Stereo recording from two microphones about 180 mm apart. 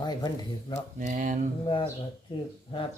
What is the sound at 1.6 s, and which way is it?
Speech, 30° left (ahead or behind).